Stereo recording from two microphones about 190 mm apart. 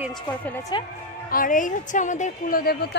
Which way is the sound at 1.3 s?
45° left (ahead or behind).